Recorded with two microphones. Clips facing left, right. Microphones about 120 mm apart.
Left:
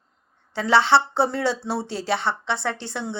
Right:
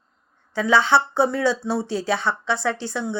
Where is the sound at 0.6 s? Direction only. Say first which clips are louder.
Even; 30° left (ahead or behind).